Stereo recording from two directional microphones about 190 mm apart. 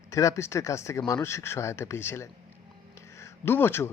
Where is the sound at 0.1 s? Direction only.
15° left (ahead or behind).